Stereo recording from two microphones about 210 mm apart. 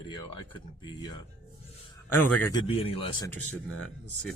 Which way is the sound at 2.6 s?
25° left (ahead or behind).